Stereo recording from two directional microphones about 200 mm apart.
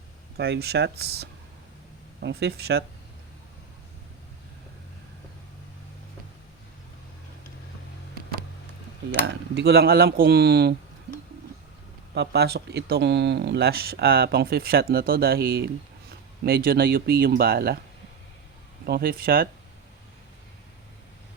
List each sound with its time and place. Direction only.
0.3 s speech: 55° right (ahead or behind)
9.2 s speech: 60° right (ahead or behind)
12.1 s speech: 55° right (ahead or behind)
18.9 s speech: 50° right (ahead or behind)